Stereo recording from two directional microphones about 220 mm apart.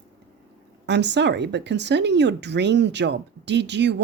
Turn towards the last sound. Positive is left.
turn(degrees=-50)  # may be behind; listen again after turning